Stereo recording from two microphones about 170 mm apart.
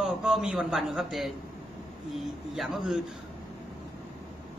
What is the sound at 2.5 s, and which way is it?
Speech, centre (ahead or behind).